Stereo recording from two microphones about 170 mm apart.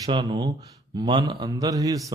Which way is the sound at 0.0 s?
25° right (ahead or behind).